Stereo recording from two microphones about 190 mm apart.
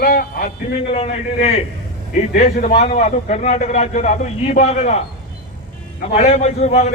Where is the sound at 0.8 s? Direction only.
30° left (ahead or behind).